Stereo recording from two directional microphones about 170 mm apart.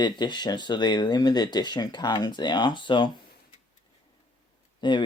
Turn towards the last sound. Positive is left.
turn(degrees=25)  # may be behind; listen again after turning